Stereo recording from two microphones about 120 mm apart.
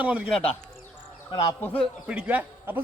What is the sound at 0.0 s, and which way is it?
Speech, 10° right (ahead or behind).